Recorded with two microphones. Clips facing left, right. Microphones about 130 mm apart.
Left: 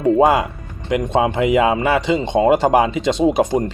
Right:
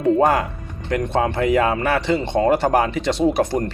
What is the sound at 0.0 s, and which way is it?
Speech, 10° left (ahead or behind).